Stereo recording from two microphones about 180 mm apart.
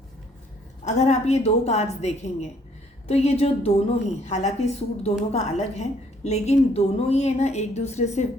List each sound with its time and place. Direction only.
0.9 s a woman's voice: 40° left (ahead or behind)